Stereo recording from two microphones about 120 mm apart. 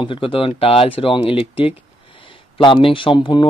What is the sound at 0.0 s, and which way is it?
Speech, 45° left (ahead or behind).